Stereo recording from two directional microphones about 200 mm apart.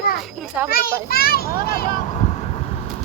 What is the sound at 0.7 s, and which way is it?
A child's voice, 50° left (ahead or behind).